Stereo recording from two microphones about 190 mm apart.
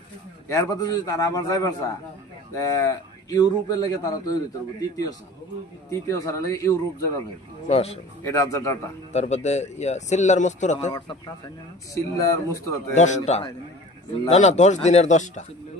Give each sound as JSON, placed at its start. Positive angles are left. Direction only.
{"t": 0.5, "sound": "a man's voice", "side_deg": 20}
{"t": 7.6, "sound": "speech", "side_deg": 35}
{"t": 8.2, "sound": "a man's voice", "side_deg": 15}
{"t": 9.1, "sound": "speech", "side_deg": 35}
{"t": 10.9, "sound": "a man's voice", "side_deg": 20}
{"t": 12.9, "sound": "speech", "side_deg": 40}